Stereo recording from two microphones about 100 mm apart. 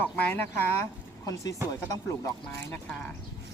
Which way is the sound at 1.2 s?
35° left (ahead or behind).